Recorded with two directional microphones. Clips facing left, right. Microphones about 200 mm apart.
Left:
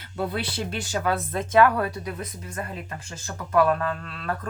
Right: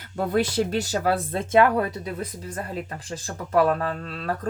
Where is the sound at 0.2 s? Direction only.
45° right (ahead or behind).